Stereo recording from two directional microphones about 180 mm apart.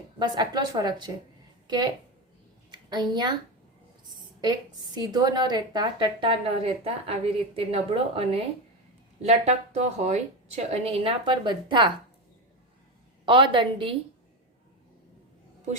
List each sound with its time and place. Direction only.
0.2 s a woman's voice: 25° right (ahead or behind)
4.9 s a woman's voice: 20° right (ahead or behind)
13.2 s a woman's voice: 30° right (ahead or behind)